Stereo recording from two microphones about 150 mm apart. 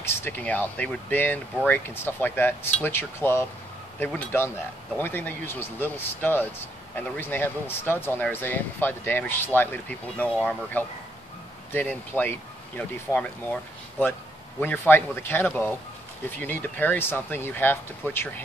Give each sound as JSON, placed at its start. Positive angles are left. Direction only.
{"t": 0.0, "sound": "speech", "side_deg": 15}